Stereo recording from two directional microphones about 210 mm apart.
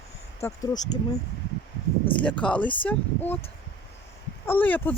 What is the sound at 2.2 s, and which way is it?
Speech, 5° left (ahead or behind).